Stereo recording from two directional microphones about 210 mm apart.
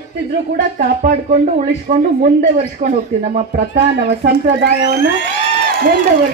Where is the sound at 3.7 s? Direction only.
50° right (ahead or behind).